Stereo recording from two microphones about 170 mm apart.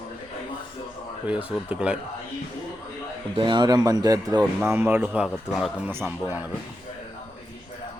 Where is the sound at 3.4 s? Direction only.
25° right (ahead or behind); by 6.0 s 10° right (ahead or behind).